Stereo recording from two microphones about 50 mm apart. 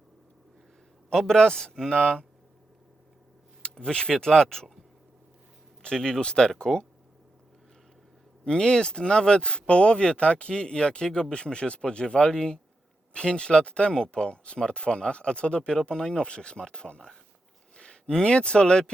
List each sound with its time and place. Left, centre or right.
1.1 s speech: centre
3.6 s speech: centre
5.8 s speech: centre
8.4 s speech: centre